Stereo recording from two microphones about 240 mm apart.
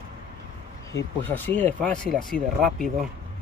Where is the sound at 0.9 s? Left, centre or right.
Centre.